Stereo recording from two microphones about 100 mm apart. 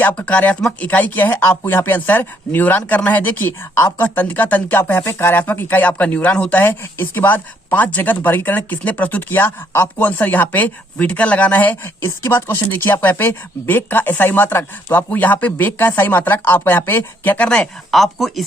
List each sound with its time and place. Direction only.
0.0 s speech: 15° left (ahead or behind)
17.9 s speech: centre (ahead or behind)